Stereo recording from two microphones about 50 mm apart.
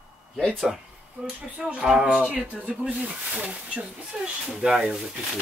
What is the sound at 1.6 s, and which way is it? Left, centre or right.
Speech, centre.